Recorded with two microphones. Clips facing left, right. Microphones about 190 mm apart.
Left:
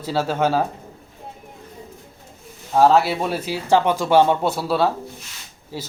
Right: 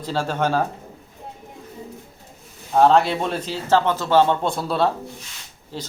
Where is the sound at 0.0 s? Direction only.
10° left (ahead or behind).